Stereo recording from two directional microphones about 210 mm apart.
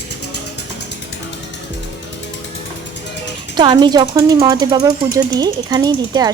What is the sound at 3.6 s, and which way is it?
Speech, 20° right (ahead or behind).